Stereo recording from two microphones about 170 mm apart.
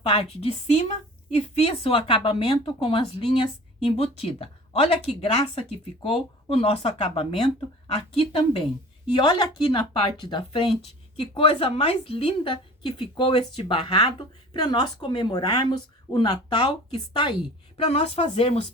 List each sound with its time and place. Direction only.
0.0 s a woman's voice: 35° left (ahead or behind)
17.7 s speech: 40° left (ahead or behind)